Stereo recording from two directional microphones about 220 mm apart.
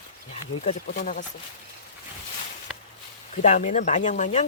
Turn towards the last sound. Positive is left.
turn(degrees=35)  # may be behind; listen again after turning